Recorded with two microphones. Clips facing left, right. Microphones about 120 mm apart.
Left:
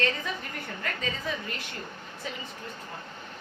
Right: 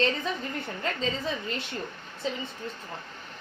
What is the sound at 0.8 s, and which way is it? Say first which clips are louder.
Speech: right 3 dB; 25° right (ahead or behind).